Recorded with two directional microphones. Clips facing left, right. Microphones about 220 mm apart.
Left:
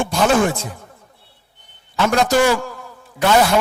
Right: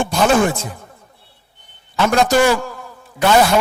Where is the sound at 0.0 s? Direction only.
30° right (ahead or behind).